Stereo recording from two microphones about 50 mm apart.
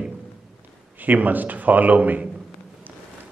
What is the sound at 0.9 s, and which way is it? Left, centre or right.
Speech, right.